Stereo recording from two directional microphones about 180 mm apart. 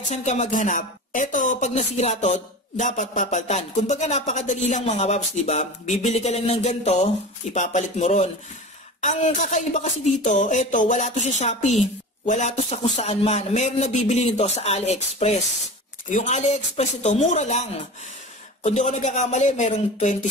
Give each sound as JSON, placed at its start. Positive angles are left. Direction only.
{"t": 0.1, "sound": "a woman's voice", "side_deg": 40}